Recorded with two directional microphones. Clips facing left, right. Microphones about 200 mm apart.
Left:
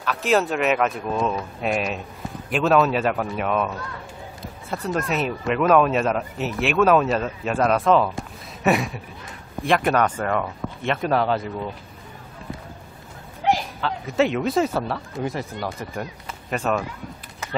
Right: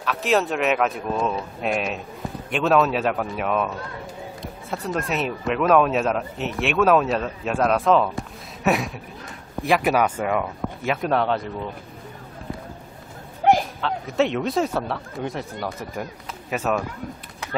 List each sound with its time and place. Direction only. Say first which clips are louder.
0.0 s speech: left 1 dB; centre (ahead or behind)
13.4 s a sound: right 4 dB; 50° right (ahead or behind)
13.7 s speech: left 1 dB; centre (ahead or behind)